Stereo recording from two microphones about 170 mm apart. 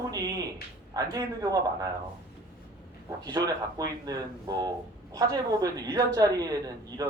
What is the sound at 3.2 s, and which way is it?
A woman's voice, 20° right (ahead or behind).